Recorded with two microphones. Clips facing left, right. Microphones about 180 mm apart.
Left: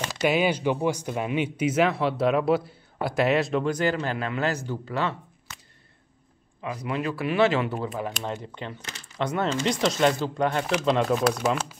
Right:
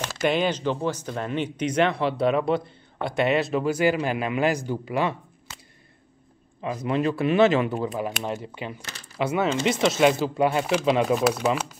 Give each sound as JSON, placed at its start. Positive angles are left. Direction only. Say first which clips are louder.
{"t": 0.1, "sound": "speech", "louder": "even", "side_deg": 10}
{"t": 6.8, "sound": "speech", "louder": "right 5 dB", "side_deg": -25}